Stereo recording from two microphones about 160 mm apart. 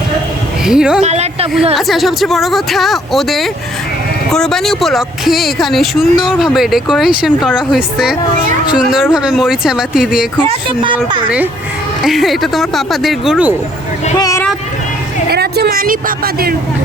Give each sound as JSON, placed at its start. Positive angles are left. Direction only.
{"t": 0.6, "sound": "speech", "side_deg": -5}
{"t": 1.0, "sound": "speech", "side_deg": -40}
{"t": 1.7, "sound": "speech", "side_deg": 0}
{"t": 9.1, "sound": "speech", "side_deg": -5}
{"t": 10.5, "sound": "speech", "side_deg": -30}
{"t": 10.9, "sound": "speech", "side_deg": -10}
{"t": 14.2, "sound": "vehicle", "side_deg": 20}
{"t": 15.3, "sound": "a woman's voice", "side_deg": -90}